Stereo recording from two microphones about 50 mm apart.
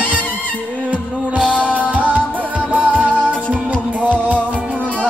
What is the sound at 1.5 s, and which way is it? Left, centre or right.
Music, left.